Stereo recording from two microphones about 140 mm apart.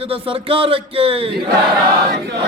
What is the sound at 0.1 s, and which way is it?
A man's voice, 40° right (ahead or behind).